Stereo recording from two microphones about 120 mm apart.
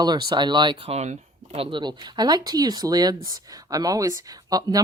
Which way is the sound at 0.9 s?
70° right (ahead or behind).